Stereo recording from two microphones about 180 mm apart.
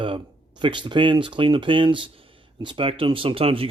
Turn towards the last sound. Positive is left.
turn(degrees=-30)  # may be behind; listen again after turning